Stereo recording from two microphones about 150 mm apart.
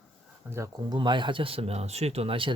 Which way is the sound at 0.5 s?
25° right (ahead or behind).